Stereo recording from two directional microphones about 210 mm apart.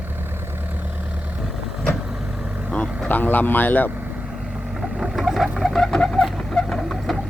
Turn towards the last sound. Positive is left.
turn(degrees=0)  # may be behind; listen again after turning